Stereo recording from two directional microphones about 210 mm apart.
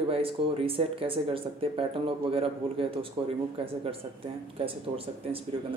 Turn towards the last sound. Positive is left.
turn(degrees=-25)  # may be behind; listen again after turning